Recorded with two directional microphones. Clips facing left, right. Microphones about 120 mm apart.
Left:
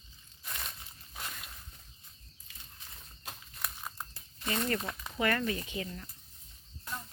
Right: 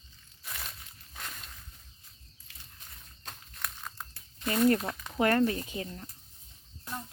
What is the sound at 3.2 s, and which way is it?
Walk, 10° left (ahead or behind).